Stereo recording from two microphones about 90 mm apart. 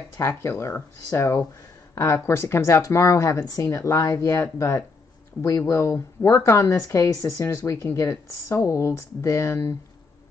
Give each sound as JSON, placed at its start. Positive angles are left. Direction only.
{"t": 0.2, "sound": "speech", "side_deg": 30}